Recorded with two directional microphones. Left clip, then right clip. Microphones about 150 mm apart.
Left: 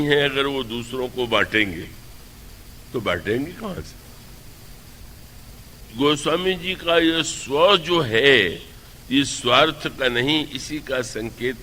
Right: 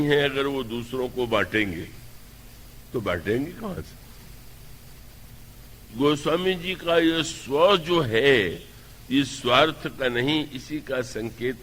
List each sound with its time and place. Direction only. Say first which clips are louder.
0.0 s a man's voice: left 3 dB; 35° left (ahead or behind)
2.9 s a man's voice: left 3 dB; 35° left (ahead or behind)
6.0 s a man's voice: left 3 dB; 35° left (ahead or behind)